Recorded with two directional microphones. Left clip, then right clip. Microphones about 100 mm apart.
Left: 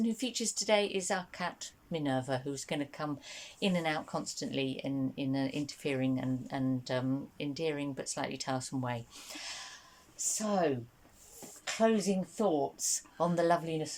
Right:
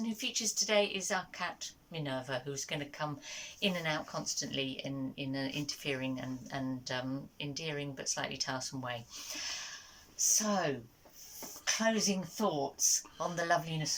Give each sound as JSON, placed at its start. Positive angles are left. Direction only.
{"t": 0.0, "sound": "speech", "side_deg": 60}